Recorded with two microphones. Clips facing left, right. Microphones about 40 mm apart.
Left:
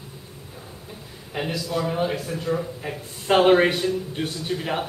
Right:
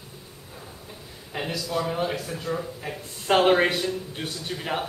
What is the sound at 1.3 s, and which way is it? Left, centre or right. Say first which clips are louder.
A man's voice: left 2 dB; centre.